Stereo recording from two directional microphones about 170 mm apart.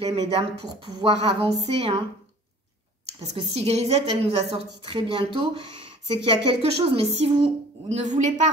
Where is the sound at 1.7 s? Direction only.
35° right (ahead or behind).